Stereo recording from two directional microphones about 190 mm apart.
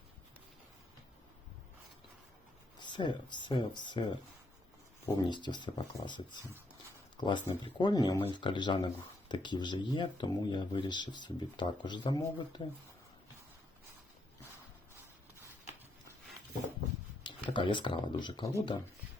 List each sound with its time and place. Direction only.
2.7 s speech: 25° left (ahead or behind)
17.2 s speech: 25° left (ahead or behind)